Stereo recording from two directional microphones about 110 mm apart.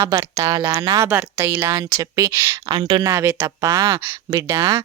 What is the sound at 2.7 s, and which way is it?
Speech, 45° right (ahead or behind).